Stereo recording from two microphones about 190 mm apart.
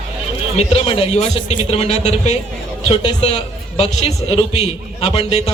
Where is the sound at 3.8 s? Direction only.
30° left (ahead or behind).